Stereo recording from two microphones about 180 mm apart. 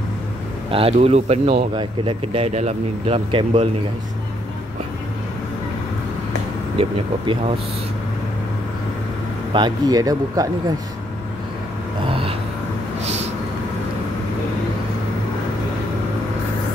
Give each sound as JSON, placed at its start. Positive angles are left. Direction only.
{"t": 0.7, "sound": "speech", "side_deg": -30}
{"t": 6.8, "sound": "speech", "side_deg": -30}
{"t": 9.5, "sound": "speech", "side_deg": -25}
{"t": 12.1, "sound": "a sound", "side_deg": -30}
{"t": 13.0, "sound": "vehicle", "side_deg": -35}